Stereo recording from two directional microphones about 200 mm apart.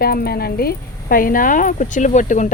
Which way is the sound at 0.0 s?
50° left (ahead or behind).